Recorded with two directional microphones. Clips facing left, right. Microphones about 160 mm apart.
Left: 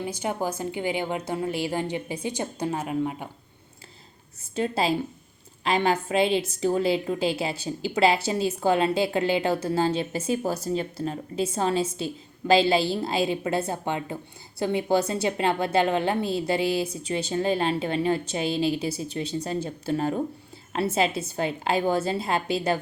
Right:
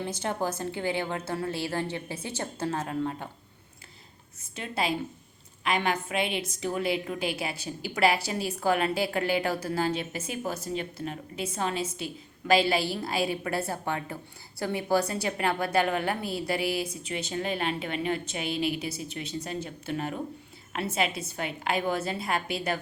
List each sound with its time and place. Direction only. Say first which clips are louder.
0.0 s a woman's voice: left 2 dB; 10° left (ahead or behind)
4.5 s a woman's voice: left 6 dB; 30° left (ahead or behind)